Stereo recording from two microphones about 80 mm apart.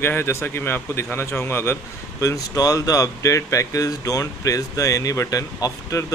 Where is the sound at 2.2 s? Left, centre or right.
Left.